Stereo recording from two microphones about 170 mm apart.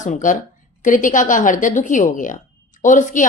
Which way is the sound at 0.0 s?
50° left (ahead or behind).